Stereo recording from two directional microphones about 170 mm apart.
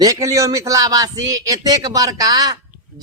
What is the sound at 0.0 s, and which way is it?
Speech, 20° right (ahead or behind).